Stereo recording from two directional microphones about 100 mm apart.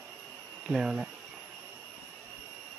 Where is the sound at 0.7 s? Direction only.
5° right (ahead or behind).